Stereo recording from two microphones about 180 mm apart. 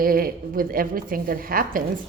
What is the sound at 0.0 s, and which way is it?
A woman's voice, 50° right (ahead or behind).